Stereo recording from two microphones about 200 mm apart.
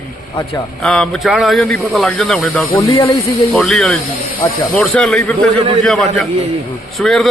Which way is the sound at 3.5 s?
Centre (ahead or behind).